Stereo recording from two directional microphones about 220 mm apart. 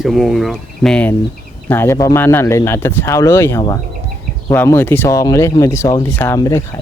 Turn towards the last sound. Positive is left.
turn(degrees=15)  # may be behind; listen again after turning